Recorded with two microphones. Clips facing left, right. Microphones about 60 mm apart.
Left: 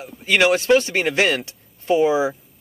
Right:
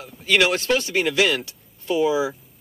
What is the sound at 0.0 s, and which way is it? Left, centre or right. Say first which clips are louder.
Speech: left 2 dB; left.